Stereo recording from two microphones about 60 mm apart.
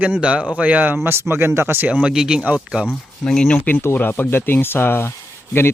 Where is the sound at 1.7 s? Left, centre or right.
Right.